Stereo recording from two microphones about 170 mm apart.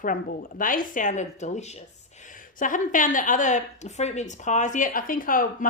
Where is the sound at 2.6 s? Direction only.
50° left (ahead or behind).